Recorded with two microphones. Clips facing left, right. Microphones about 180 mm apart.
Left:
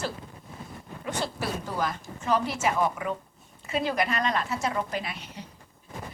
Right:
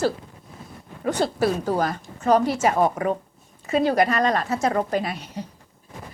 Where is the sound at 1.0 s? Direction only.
40° right (ahead or behind).